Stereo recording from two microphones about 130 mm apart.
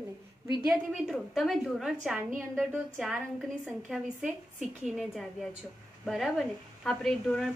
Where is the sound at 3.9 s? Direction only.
5° right (ahead or behind).